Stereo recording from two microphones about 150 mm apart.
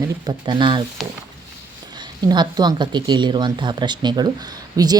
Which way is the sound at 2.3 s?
25° right (ahead or behind).